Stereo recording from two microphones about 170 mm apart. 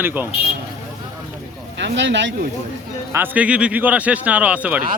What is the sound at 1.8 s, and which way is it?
Speech, 90° right.